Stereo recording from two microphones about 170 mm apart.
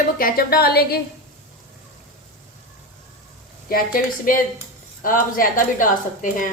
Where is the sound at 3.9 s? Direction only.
55° left (ahead or behind).